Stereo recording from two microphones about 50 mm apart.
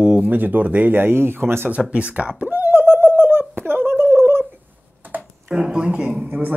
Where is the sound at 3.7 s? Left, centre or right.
Right.